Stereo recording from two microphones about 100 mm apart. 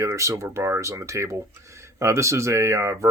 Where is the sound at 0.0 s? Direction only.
30° right (ahead or behind).